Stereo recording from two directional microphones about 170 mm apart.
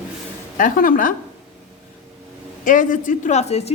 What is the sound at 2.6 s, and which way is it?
A woman's voice, 50° left (ahead or behind).